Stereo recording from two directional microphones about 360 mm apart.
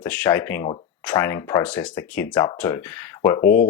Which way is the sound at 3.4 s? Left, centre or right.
Left.